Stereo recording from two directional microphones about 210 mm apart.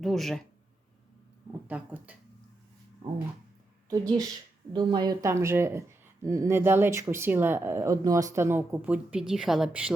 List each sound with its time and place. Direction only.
0.0 s speech: centre (ahead or behind)
1.6 s speech: 5° right (ahead or behind)
3.8 s speech: 20° right (ahead or behind)